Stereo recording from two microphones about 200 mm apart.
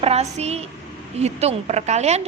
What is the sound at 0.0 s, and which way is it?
A woman's voice, 30° right (ahead or behind).